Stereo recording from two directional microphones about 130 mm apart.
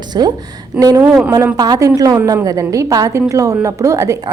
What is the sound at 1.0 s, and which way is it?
Speech, 10° right (ahead or behind).